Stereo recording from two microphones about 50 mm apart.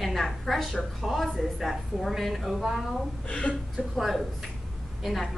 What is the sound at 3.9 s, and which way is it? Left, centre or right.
Speech, centre.